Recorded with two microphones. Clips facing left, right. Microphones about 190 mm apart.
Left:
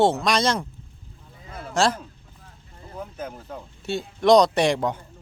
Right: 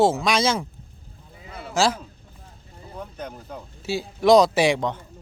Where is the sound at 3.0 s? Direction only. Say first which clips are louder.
Left 1 dB; 5° left (ahead or behind).